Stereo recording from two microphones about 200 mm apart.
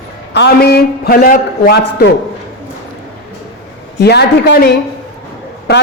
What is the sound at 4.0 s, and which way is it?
A woman's voice, 55° left (ahead or behind).